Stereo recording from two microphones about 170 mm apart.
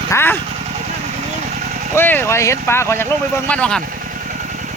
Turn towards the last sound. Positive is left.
turn(degrees=5)  # may be behind; listen again after turning